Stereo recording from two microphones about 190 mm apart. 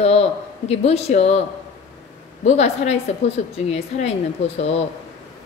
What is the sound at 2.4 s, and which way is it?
A woman's voice, 35° left (ahead or behind).